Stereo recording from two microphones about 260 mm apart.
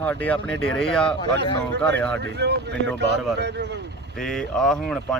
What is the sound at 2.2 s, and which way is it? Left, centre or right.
Speech, right.